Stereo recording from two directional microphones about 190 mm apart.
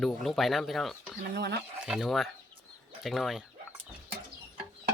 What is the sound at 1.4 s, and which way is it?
Speech, 60° right (ahead or behind).